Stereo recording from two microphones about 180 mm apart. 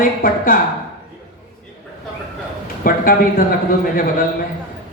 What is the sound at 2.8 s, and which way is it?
Speech, 50° left (ahead or behind).